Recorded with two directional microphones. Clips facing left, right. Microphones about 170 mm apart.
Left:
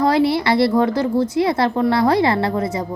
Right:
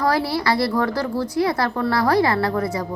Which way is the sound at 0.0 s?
20° left (ahead or behind).